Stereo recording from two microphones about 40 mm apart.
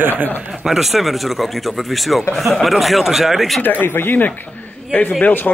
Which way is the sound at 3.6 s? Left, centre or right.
Left.